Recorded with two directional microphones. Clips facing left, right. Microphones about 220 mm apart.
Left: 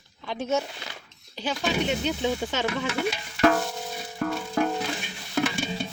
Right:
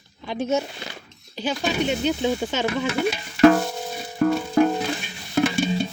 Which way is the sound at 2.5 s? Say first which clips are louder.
Right 4 dB; 5° right (ahead or behind).